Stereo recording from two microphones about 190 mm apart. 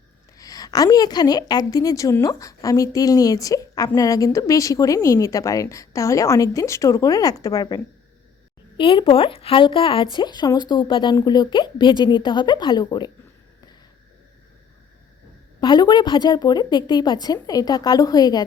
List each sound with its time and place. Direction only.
0.3 s a woman's voice: 20° left (ahead or behind)
8.8 s speech: 25° left (ahead or behind)
15.6 s speech: 25° left (ahead or behind)